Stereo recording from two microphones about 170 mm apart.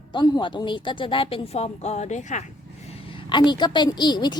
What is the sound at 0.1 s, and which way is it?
A woman's voice, 25° left (ahead or behind).